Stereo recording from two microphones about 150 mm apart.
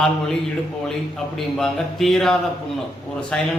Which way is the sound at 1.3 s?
Centre (ahead or behind).